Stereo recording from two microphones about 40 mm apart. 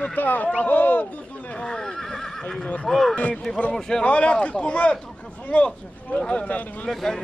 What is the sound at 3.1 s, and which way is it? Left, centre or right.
Speech, left.